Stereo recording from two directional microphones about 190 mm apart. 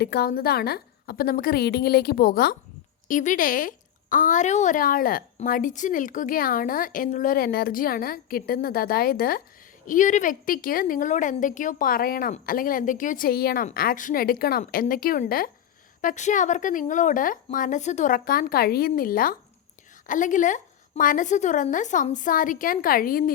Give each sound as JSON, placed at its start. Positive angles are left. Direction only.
{"t": 0.0, "sound": "a woman's voice", "side_deg": 55}